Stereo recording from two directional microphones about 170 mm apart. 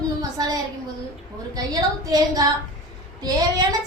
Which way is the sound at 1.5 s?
20° right (ahead or behind).